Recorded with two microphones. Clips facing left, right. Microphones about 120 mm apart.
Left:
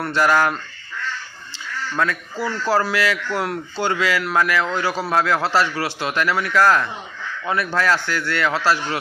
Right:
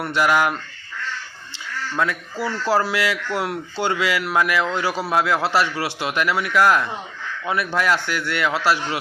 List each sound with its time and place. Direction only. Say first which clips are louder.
0.1 s speech: left 1 dB; 15° right (ahead or behind)
2.4 s speech: even; 25° right (ahead or behind)